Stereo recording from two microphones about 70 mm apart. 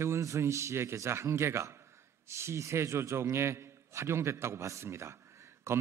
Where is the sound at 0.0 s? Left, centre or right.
Right.